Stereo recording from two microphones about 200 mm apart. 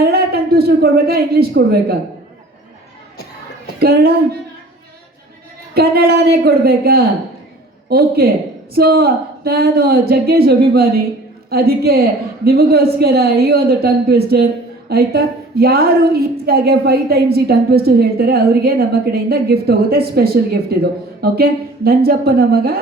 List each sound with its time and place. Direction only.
0.0 s speech: 50° right (ahead or behind)
3.8 s a woman's voice: 50° right (ahead or behind)
5.7 s a woman's voice: 50° right (ahead or behind)